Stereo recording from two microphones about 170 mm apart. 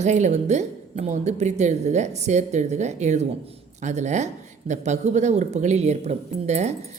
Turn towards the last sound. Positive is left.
turn(degrees=-40)  # may be behind; listen again after turning